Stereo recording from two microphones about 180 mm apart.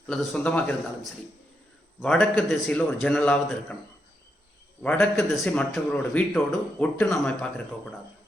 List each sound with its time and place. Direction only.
0.1 s a man's voice: 5° left (ahead or behind)
4.8 s a man's voice: 5° left (ahead or behind)